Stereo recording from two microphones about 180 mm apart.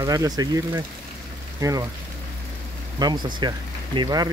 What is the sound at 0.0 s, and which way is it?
Speech, 20° right (ahead or behind).